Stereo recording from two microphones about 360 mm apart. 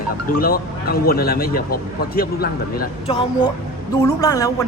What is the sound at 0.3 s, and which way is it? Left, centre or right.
Speech, left.